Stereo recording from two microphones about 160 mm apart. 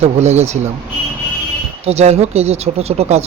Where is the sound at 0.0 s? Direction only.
45° right (ahead or behind).